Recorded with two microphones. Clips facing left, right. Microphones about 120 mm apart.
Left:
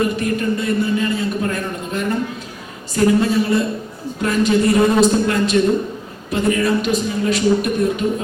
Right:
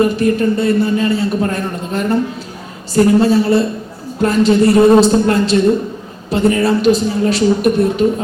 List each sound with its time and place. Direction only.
0.0 s a man's voice: 30° right (ahead or behind)